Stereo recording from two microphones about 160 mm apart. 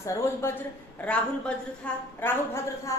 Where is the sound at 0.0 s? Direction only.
20° left (ahead or behind).